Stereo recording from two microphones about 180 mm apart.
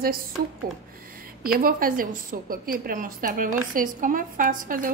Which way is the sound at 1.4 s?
50° right (ahead or behind).